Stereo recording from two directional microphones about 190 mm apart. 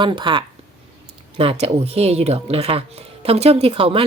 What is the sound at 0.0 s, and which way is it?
Speech, 25° right (ahead or behind).